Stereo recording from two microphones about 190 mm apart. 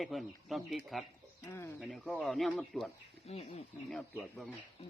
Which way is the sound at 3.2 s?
30° left (ahead or behind).